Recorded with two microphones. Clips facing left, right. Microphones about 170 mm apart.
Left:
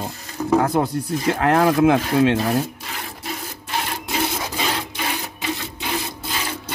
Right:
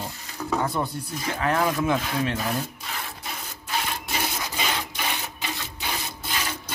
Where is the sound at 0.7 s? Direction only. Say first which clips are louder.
Left 8 dB; 90° left.